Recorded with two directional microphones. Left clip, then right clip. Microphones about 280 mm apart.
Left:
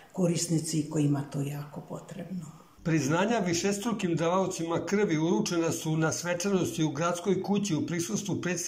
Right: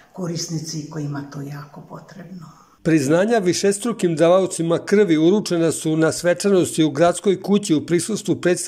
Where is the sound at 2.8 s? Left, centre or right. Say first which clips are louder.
Right 11 dB; right.